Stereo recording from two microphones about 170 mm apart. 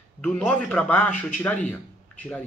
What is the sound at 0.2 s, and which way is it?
Speech, 5° left (ahead or behind).